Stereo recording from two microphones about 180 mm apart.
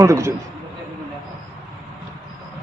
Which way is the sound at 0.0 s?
15° right (ahead or behind).